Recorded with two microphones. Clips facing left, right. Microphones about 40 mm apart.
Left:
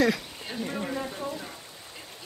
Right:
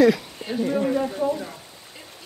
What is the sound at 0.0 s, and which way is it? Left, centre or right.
Speech, centre.